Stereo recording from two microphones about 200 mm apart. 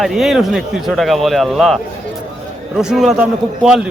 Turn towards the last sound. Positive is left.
turn(degrees=-5)  # may be behind; listen again after turning